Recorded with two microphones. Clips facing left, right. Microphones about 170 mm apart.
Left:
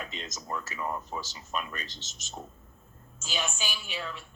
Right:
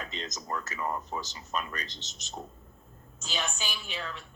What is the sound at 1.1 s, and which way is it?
Speech, 15° right (ahead or behind).